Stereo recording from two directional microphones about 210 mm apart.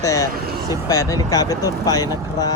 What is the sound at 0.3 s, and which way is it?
Speech, 45° right (ahead or behind).